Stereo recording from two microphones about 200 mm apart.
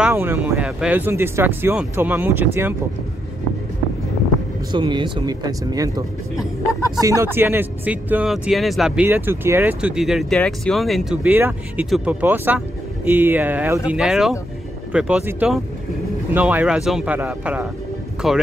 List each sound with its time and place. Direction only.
0.0 s speech: 10° right (ahead or behind)
4.7 s speech: 20° right (ahead or behind); by 18.4 s centre (ahead or behind)